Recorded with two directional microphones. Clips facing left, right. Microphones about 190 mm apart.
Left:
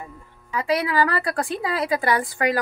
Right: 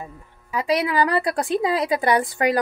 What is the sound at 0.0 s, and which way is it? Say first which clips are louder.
A woman's voice: right 2 dB; 20° right (ahead or behind).